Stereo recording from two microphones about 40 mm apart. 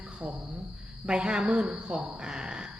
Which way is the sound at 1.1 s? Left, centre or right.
Right.